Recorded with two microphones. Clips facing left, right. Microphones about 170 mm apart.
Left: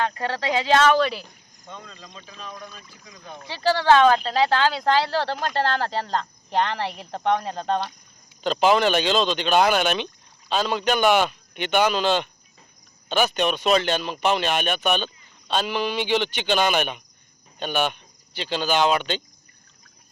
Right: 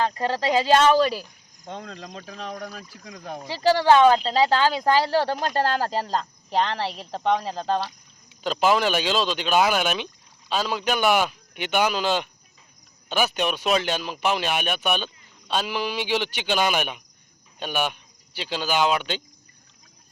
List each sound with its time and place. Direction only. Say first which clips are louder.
1.6 s speech: right 6 dB; 70° right (ahead or behind)
3.5 s speech: right 1 dB; 15° right (ahead or behind)